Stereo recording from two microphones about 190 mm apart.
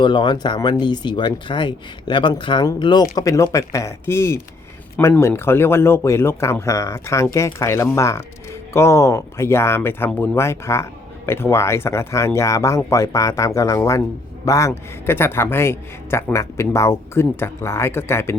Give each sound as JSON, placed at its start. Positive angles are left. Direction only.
{"t": 0.0, "sound": "a man's voice", "side_deg": 25}